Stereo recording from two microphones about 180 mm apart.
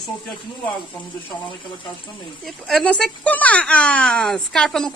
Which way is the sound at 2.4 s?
5° left (ahead or behind).